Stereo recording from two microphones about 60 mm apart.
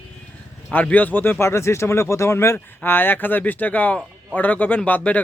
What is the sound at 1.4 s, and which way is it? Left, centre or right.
A man's voice, left.